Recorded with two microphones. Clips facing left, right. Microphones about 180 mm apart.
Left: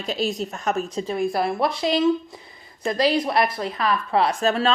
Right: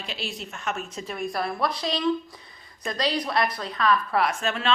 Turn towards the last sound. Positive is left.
turn(degrees=35)  # may be behind; listen again after turning